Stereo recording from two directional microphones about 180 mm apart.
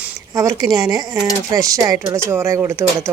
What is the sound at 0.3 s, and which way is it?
A woman's voice, 20° right (ahead or behind).